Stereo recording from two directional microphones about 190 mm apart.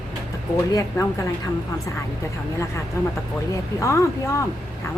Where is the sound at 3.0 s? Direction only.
15° left (ahead or behind).